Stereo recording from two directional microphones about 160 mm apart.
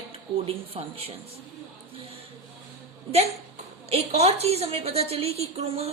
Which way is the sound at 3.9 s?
40° right (ahead or behind).